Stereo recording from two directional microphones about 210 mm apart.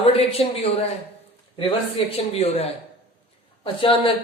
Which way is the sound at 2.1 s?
30° left (ahead or behind).